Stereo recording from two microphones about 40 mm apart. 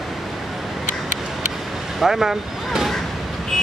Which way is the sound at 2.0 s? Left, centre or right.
Centre.